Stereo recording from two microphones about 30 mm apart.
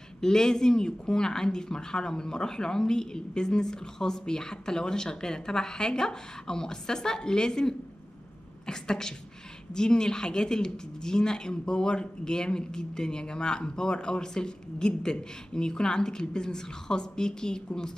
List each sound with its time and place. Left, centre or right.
0.2 s speech: left